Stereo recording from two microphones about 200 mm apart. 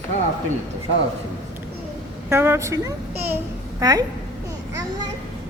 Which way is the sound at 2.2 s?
10° right (ahead or behind).